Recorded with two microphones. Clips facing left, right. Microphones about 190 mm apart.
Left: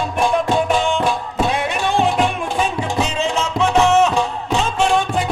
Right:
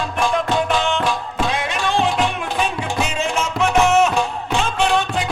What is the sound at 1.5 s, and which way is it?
Music, 60° left (ahead or behind).